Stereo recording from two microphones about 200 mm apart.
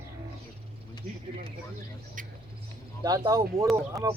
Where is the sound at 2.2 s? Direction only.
40° right (ahead or behind).